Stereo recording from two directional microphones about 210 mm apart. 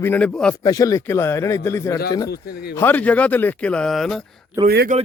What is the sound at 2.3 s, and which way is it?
Speech, 50° left (ahead or behind).